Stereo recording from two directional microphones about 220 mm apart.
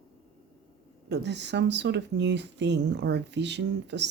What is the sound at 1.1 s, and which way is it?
Speech, 50° right (ahead or behind).